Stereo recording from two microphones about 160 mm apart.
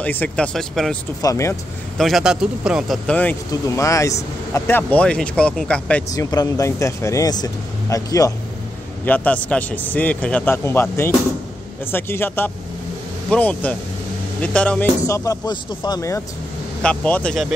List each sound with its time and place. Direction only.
0.0 s a man's voice: 10° left (ahead or behind)
1.2 s speech: 20° left (ahead or behind)
2.0 s a man's voice: centre (ahead or behind)
3.1 s speech: 10° left (ahead or behind)
3.6 s speech: 20° left (ahead or behind)
6.0 s speech: 20° left (ahead or behind)
9.0 s speech: 10° left (ahead or behind)
15.0 s speech: 20° left (ahead or behind)
16.8 s a man's voice: 5° left (ahead or behind)